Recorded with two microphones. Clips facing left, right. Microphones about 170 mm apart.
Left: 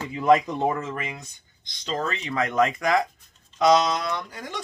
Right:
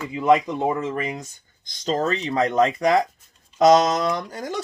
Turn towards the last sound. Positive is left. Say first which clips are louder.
# right 5 dB
turn(degrees=-40)  # may be behind; listen again after turning